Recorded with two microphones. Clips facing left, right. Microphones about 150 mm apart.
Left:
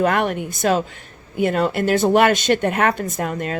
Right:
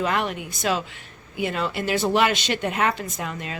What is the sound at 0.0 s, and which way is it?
Speech, 55° left (ahead or behind).